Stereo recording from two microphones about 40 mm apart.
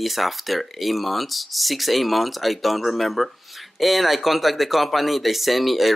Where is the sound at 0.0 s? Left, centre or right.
Centre.